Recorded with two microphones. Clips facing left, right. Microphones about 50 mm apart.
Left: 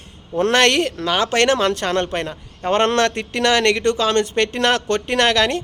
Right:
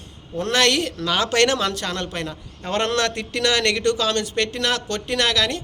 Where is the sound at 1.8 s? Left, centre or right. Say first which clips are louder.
Left 7 dB; left.